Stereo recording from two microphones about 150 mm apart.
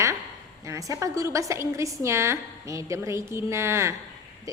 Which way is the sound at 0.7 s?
20° right (ahead or behind).